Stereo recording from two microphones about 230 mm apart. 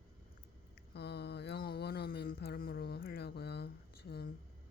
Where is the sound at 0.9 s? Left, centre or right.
Left.